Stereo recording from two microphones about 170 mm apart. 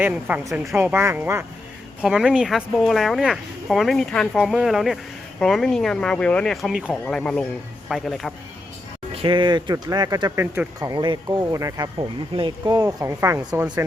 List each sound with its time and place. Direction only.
0.0 s speech: 10° right (ahead or behind)
9.1 s speech: 30° right (ahead or behind)